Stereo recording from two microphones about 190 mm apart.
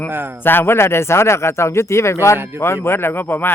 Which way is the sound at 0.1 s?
10° right (ahead or behind).